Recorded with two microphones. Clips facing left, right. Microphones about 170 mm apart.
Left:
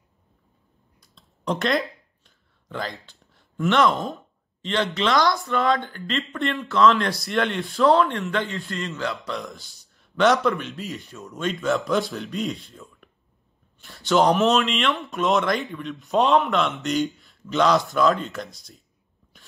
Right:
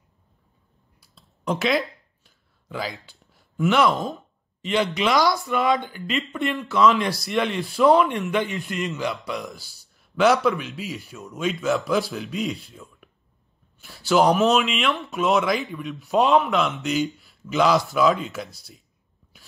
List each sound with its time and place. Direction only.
1.0 s a sound: 5° right (ahead or behind)
5.4 s a man's voice: 15° right (ahead or behind)
7.8 s a man's voice: 15° right (ahead or behind)
9.3 s speech: centre (ahead or behind)
19.3 s sneeze: 5° right (ahead or behind)